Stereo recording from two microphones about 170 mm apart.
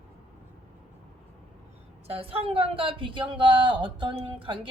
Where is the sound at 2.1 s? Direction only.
35° right (ahead or behind).